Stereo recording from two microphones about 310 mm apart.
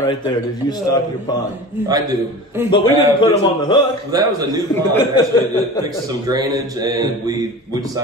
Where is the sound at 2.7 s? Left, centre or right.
Centre.